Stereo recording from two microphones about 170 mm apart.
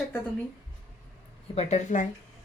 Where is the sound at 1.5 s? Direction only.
45° left (ahead or behind).